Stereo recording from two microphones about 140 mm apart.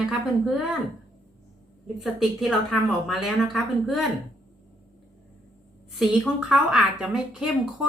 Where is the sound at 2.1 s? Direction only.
Centre (ahead or behind).